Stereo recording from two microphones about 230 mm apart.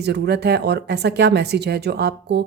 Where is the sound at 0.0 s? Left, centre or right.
Right.